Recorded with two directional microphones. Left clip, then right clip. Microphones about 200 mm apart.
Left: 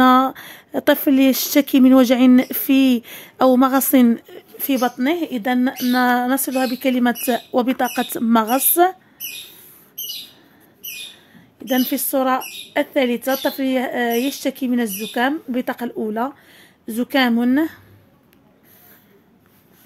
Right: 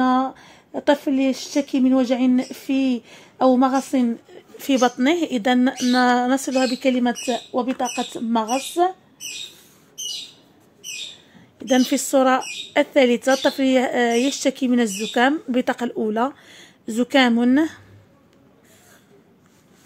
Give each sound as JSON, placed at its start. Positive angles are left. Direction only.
{"t": 0.0, "sound": "speech", "side_deg": 35}
{"t": 4.6, "sound": "a woman's voice", "side_deg": 0}
{"t": 11.6, "sound": "speech", "side_deg": -5}